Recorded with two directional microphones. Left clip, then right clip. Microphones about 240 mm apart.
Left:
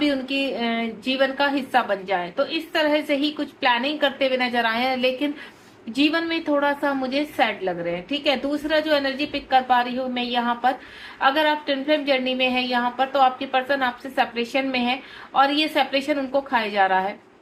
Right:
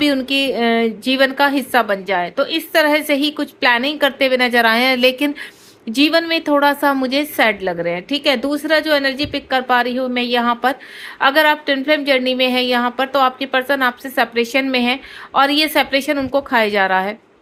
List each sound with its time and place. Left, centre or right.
0.0 s speech: right